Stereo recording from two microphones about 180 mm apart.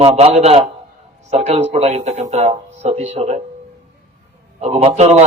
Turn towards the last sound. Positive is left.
turn(degrees=-40)  # may be behind; listen again after turning